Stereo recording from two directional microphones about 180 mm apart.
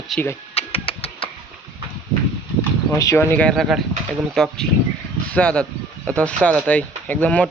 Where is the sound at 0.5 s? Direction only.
35° left (ahead or behind).